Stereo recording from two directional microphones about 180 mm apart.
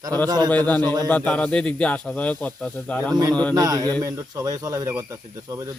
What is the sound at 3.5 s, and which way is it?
Speech, 20° right (ahead or behind).